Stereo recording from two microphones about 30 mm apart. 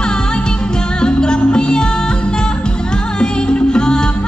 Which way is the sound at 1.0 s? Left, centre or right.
Left.